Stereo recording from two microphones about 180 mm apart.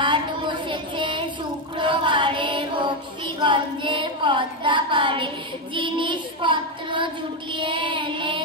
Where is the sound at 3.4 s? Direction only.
25° right (ahead or behind).